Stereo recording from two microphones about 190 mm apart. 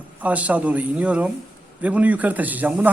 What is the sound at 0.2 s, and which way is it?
A man's voice, 10° right (ahead or behind).